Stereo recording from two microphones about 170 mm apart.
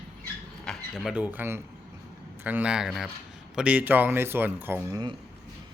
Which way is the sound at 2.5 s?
10° right (ahead or behind).